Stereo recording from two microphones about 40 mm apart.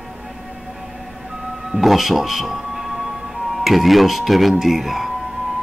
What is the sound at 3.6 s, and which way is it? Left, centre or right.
Speech, centre.